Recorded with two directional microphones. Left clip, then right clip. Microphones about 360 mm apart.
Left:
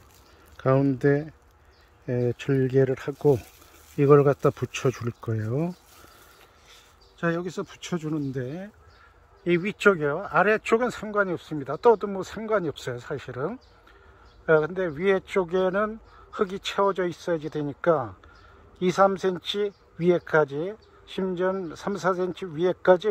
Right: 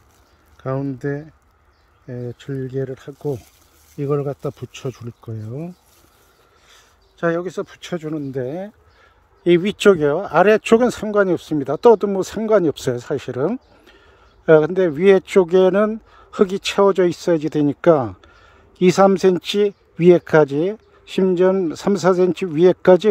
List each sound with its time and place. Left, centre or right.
0.6 s speech: centre
6.7 s speech: centre; by 23.0 s right